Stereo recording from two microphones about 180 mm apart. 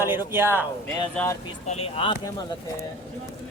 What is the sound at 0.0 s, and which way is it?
Speech, 10° right (ahead or behind).